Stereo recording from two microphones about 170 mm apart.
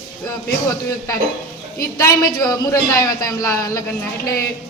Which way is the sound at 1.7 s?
20° left (ahead or behind).